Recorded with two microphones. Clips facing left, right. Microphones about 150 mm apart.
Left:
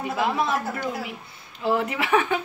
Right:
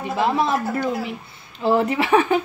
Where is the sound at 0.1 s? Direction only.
30° right (ahead or behind).